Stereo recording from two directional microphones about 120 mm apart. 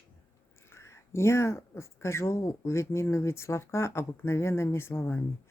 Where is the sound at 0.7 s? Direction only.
20° left (ahead or behind).